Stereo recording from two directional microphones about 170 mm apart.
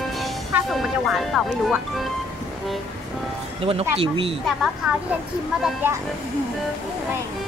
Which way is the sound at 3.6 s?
35° right (ahead or behind).